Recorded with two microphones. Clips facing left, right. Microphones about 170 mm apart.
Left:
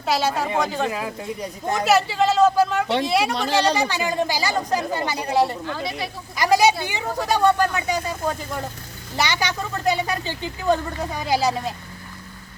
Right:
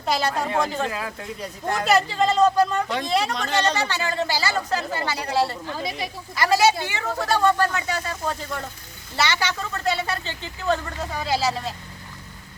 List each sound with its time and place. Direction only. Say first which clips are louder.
0.0 s a woman's voice: left 2 dB; 5° left (ahead or behind)
0.9 s speech: left 3 dB; 15° left (ahead or behind)
1.7 s speech: left 2 dB; 5° left (ahead or behind); by 5.5 s 20° left (ahead or behind)
5.7 s speech: left 1 dB; 20° right (ahead or behind)
6.3 s speech: left 2 dB; 15° left (ahead or behind)
9.1 s speech: left 1 dB; 15° left (ahead or behind)